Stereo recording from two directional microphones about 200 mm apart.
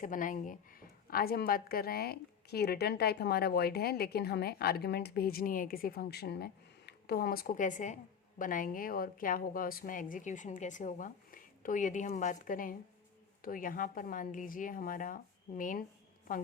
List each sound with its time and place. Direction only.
0.0 s a woman's voice: 40° left (ahead or behind)